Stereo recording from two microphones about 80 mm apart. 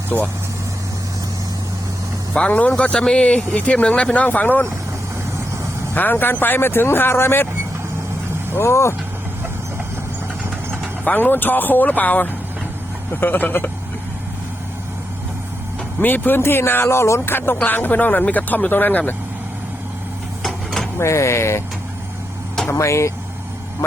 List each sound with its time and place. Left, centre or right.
2.3 s speech: centre
5.9 s speech: left
8.5 s speech: left
11.0 s speech: left
16.0 s speech: left
20.4 s a sound: centre
21.0 s speech: left
22.7 s speech: left